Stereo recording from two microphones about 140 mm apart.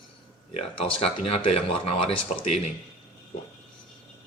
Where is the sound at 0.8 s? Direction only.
40° left (ahead or behind).